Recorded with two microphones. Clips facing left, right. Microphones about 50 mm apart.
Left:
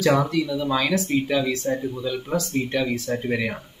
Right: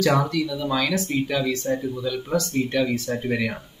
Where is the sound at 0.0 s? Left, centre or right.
Centre.